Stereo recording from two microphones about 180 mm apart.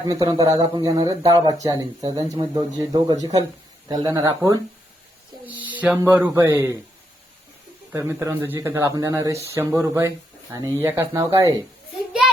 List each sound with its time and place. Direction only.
0.1 s speech: 20° right (ahead or behind)
5.5 s a sound: 10° right (ahead or behind)
6.0 s speech: 10° right (ahead or behind)
7.9 s speech: 15° right (ahead or behind)